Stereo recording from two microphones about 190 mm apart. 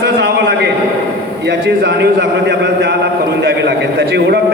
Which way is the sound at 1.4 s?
65° right (ahead or behind).